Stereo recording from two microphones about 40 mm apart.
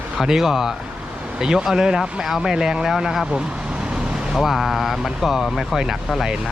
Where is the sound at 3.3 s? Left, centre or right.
Right.